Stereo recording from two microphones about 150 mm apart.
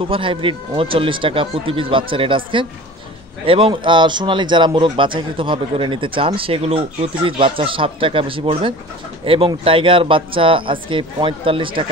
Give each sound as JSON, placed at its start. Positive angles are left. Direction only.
{"t": 0.0, "sound": "a man's voice", "side_deg": -35}